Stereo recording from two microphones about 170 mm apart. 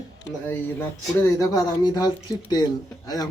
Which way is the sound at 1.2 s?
20° left (ahead or behind).